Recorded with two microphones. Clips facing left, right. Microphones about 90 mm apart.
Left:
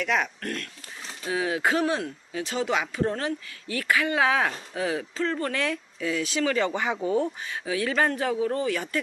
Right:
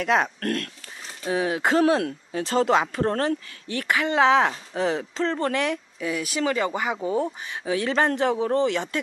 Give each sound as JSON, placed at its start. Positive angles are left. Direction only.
{"t": 0.0, "sound": "speech", "side_deg": -35}
{"t": 2.3, "sound": "speech", "side_deg": -40}
{"t": 5.6, "sound": "speech", "side_deg": -15}
{"t": 7.0, "sound": "speech", "side_deg": -25}